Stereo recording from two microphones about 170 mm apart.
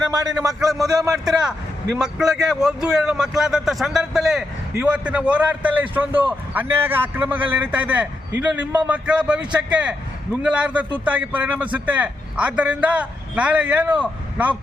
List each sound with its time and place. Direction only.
0.9 s a man's voice: 20° right (ahead or behind)
1.2 s a man's voice: 5° right (ahead or behind)